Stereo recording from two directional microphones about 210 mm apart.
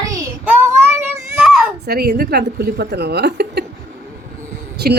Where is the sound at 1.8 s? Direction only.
50° right (ahead or behind).